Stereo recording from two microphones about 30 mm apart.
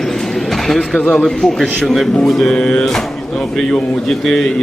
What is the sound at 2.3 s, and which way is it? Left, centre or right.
Speech, centre.